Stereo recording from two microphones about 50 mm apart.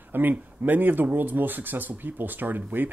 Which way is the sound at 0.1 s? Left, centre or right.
Right.